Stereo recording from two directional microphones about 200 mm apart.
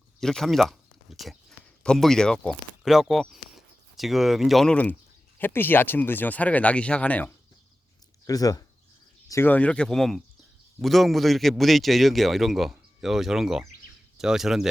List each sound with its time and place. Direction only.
0.2 s a man's voice: centre (ahead or behind)